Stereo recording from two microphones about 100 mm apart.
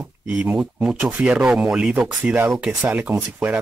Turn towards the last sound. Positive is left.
turn(degrees=-20)  # may be behind; listen again after turning